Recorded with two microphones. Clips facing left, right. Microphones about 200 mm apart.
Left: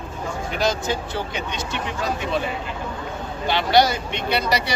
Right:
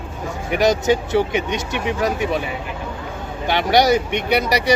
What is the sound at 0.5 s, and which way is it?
Speech, 20° right (ahead or behind).